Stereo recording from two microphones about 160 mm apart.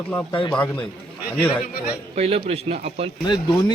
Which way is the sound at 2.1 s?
40° right (ahead or behind).